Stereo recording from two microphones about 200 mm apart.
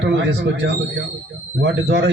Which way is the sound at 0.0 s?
60° right (ahead or behind).